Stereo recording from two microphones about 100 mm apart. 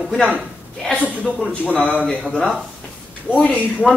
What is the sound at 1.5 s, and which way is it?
A man's voice, 15° left (ahead or behind).